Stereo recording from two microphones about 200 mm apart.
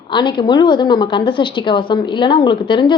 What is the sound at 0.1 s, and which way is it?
A woman's voice, 20° left (ahead or behind).